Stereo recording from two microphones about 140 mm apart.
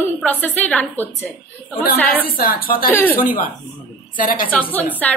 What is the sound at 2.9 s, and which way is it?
Speech, 15° left (ahead or behind).